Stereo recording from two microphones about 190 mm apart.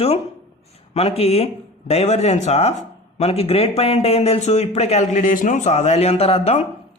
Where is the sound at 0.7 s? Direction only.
35° left (ahead or behind).